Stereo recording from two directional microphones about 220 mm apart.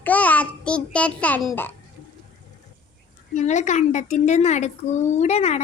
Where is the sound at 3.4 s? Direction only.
30° left (ahead or behind).